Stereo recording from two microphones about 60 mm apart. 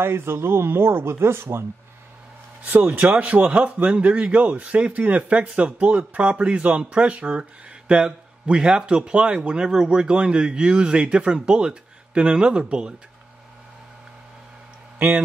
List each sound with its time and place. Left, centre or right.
0.0 s speech: right
2.6 s a man's voice: right; by 12.9 s centre
15.0 s a man's voice: right